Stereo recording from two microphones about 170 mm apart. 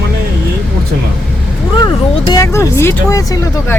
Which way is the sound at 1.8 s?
25° left (ahead or behind).